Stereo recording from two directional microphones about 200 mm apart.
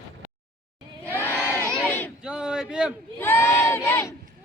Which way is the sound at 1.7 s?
5° left (ahead or behind).